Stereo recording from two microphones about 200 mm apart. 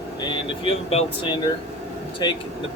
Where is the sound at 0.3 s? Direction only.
30° left (ahead or behind).